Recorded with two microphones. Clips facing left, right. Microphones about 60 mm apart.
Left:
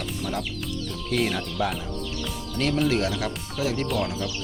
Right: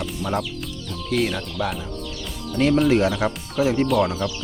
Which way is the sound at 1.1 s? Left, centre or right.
Centre.